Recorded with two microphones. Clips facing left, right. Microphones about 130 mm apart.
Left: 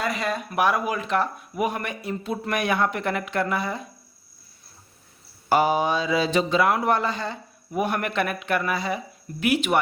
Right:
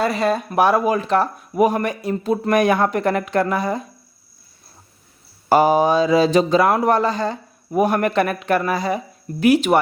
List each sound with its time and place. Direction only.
0.0 s speech: 35° right (ahead or behind)
5.5 s speech: 40° right (ahead or behind)